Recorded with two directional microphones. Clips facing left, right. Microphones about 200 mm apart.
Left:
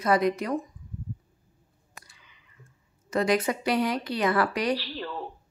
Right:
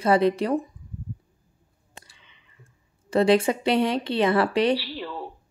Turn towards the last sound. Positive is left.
turn(degrees=-5)  # may be behind; listen again after turning